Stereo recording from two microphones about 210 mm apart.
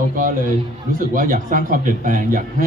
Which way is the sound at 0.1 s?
40° right (ahead or behind).